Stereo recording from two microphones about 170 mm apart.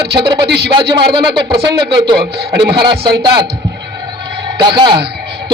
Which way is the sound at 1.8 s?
30° right (ahead or behind).